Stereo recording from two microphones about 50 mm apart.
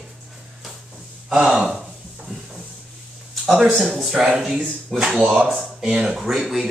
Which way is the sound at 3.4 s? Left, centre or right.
Centre.